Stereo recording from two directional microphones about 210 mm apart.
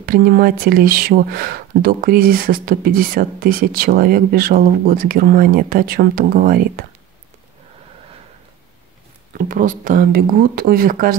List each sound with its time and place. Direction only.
0.0 s speech: 45° right (ahead or behind)
9.3 s speech: 40° right (ahead or behind)